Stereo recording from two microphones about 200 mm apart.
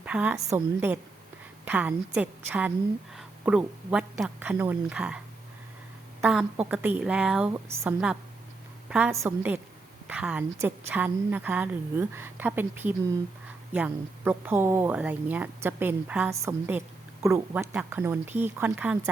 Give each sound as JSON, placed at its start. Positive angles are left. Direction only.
{"t": 0.0, "sound": "a woman's voice", "side_deg": -5}
{"t": 6.2, "sound": "a woman's voice", "side_deg": -5}